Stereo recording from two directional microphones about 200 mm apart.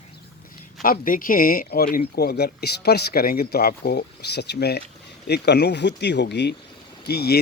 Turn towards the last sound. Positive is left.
turn(degrees=55)  # may be behind; listen again after turning